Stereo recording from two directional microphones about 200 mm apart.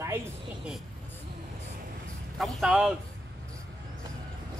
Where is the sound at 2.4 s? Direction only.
5° right (ahead or behind).